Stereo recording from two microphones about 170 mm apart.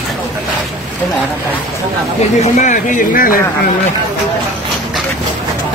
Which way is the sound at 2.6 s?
50° left (ahead or behind).